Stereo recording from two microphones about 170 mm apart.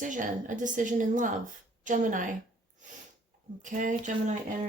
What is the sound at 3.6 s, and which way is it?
Speech, 50° right (ahead or behind).